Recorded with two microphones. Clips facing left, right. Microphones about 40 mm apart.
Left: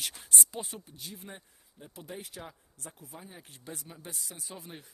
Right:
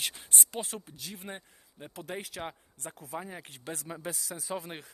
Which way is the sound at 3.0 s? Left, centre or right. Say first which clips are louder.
Right 9 dB; right.